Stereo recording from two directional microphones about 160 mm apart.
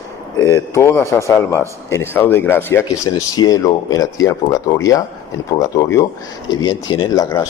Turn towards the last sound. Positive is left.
turn(degrees=20)  # may be behind; listen again after turning